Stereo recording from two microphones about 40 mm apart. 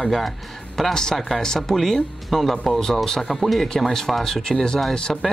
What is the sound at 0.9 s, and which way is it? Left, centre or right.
Speech, centre.